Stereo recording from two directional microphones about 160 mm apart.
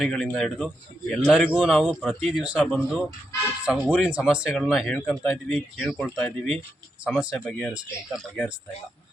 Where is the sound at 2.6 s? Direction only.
5° left (ahead or behind).